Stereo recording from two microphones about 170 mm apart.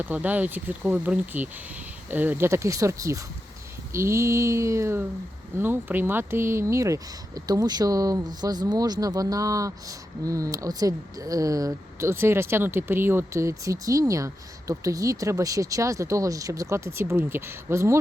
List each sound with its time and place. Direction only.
0.0 s speech: 10° right (ahead or behind)